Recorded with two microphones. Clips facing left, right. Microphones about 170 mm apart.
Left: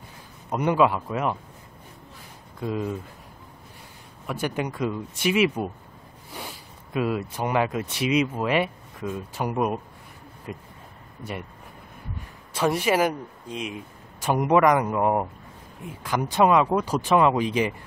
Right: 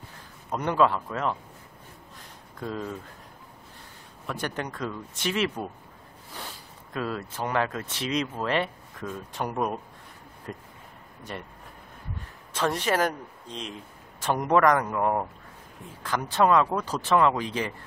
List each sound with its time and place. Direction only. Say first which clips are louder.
0.5 s a man's voice: left 3 dB; 10° left (ahead or behind)
2.6 s a man's voice: left 5 dB; 10° left (ahead or behind)
4.3 s a man's voice: left 4 dB; 10° left (ahead or behind)
12.5 s a man's voice: left 3 dB; 10° left (ahead or behind)